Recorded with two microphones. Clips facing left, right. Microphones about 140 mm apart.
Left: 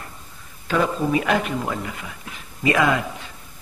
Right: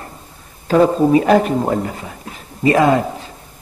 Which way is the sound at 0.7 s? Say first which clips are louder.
Right 9 dB; 35° right (ahead or behind).